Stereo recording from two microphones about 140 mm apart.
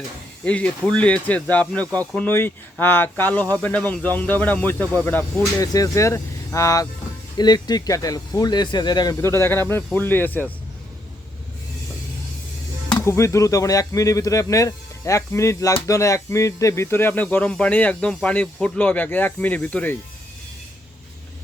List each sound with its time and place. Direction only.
0.4 s speech: 10° left (ahead or behind)
5.5 s speech: 25° left (ahead or behind)
12.9 s speech: 20° left (ahead or behind)